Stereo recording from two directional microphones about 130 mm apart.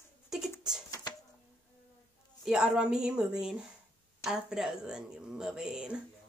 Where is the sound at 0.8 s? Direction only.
30° left (ahead or behind).